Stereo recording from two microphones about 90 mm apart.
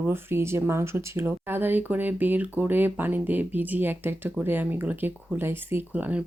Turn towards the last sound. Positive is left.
turn(degrees=-15)  # may be behind; listen again after turning